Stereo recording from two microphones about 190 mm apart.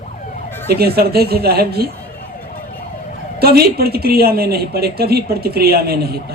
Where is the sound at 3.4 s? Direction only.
55° right (ahead or behind).